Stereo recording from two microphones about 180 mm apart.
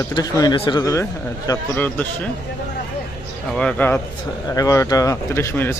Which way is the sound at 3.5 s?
10° left (ahead or behind).